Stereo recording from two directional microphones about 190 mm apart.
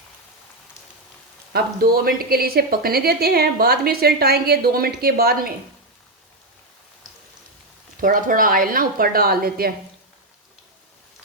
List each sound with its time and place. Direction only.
1.5 s a woman's voice: 50° right (ahead or behind)
8.0 s a woman's voice: 45° right (ahead or behind)